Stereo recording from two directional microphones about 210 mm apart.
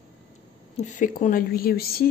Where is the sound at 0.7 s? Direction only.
35° left (ahead or behind).